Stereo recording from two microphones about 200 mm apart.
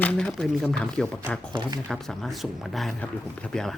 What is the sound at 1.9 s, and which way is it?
Speech, centre (ahead or behind).